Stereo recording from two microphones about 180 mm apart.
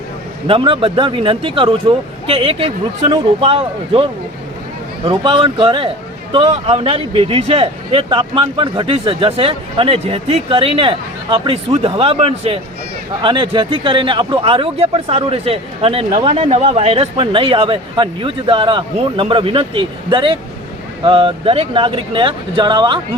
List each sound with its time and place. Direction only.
0.4 s speech: 30° right (ahead or behind)